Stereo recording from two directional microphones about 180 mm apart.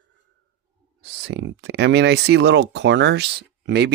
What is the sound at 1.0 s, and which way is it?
Speech, 70° right (ahead or behind).